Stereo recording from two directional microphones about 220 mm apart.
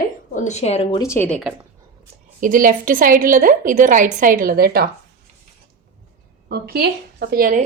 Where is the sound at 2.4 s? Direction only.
40° right (ahead or behind).